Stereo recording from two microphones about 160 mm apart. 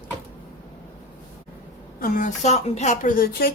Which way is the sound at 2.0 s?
60° left (ahead or behind).